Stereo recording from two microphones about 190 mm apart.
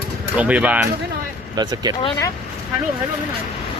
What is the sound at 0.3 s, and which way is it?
Speech, 5° right (ahead or behind).